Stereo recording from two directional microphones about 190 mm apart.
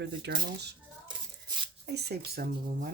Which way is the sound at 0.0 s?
60° right (ahead or behind).